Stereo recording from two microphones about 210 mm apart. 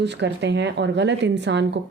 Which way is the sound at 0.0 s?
55° right (ahead or behind).